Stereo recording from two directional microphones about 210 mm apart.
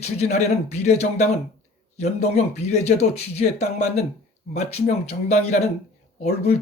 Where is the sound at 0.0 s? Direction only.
30° left (ahead or behind).